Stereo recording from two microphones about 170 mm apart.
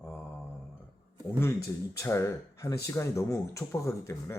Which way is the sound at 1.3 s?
15° left (ahead or behind).